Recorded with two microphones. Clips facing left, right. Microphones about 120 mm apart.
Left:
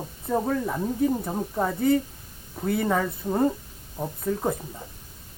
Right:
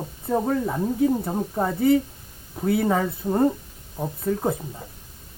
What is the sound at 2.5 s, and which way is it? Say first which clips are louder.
Speech: right 3 dB; 5° right (ahead or behind).